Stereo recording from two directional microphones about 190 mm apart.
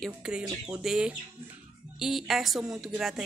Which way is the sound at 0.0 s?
5° right (ahead or behind).